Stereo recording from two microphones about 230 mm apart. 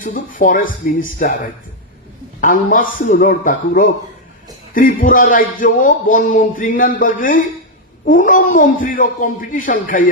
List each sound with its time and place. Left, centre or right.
0.0 s speech: left
2.4 s speech: left